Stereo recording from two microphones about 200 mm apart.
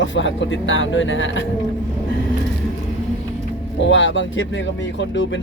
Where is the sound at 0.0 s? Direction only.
70° left (ahead or behind).